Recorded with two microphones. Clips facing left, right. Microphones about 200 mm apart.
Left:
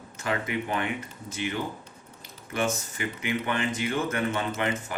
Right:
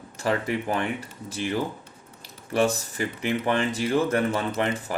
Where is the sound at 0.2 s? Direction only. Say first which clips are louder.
Right 4 dB; 35° right (ahead or behind).